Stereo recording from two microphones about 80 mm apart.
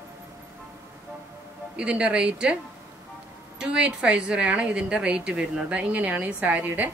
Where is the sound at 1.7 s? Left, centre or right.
Centre.